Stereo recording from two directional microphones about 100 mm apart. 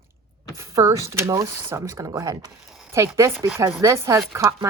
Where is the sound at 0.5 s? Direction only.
30° right (ahead or behind).